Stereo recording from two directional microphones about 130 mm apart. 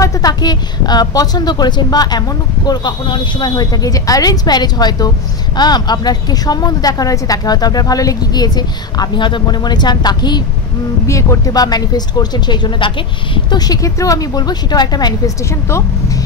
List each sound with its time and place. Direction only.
0.0 s a woman's voice: 30° left (ahead or behind)